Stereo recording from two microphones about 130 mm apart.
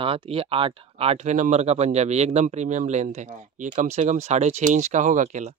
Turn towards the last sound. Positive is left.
turn(degrees=-65)  # may be behind; listen again after turning